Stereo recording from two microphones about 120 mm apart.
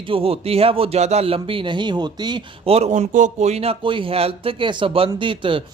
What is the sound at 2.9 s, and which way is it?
A man's voice, 90° right.